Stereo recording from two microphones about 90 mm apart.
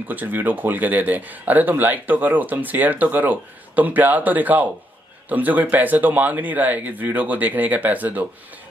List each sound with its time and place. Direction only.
0.1 s speech: 20° right (ahead or behind)